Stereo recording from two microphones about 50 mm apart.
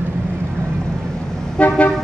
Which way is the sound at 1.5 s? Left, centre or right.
Left.